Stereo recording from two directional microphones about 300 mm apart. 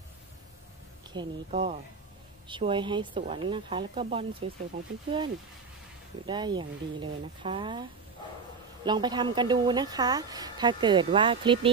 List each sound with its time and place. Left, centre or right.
1.1 s a woman's voice: centre
6.2 s a woman's voice: centre
8.8 s a woman's voice: centre